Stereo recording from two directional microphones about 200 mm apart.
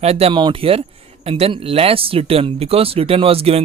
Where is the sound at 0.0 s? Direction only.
30° right (ahead or behind).